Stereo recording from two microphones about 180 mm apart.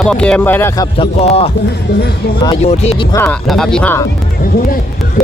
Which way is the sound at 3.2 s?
Centre (ahead or behind).